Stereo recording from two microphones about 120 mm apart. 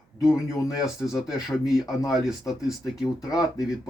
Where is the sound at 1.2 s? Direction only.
5° right (ahead or behind).